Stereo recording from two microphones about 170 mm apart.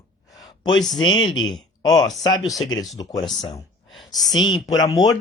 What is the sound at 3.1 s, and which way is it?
Speech, centre (ahead or behind).